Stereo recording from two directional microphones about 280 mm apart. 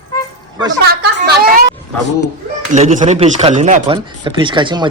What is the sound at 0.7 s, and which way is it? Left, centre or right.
Speech, right.